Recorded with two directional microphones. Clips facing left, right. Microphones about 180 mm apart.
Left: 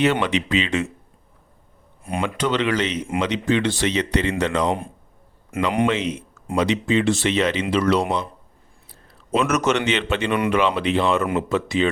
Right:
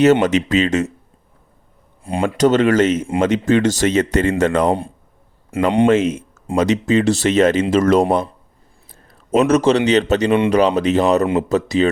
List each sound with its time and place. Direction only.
0.0 s speech: 45° right (ahead or behind)
2.1 s speech: 30° right (ahead or behind)
2.4 s speech: 45° right (ahead or behind)
5.5 s speech: 30° right (ahead or behind)
5.9 s speech: 45° right (ahead or behind)
8.9 s a sound: 45° right (ahead or behind)
9.5 s speech: 30° right (ahead or behind)